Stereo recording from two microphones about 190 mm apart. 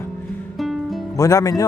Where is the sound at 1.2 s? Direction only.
15° left (ahead or behind).